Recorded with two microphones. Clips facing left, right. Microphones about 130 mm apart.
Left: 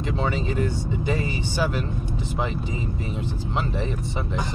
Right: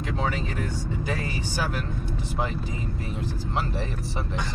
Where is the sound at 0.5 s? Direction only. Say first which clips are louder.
Left 5 dB; 50° right (ahead or behind).